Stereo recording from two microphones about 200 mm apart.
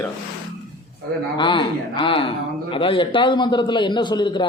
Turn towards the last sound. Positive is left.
turn(degrees=20)  # may be behind; listen again after turning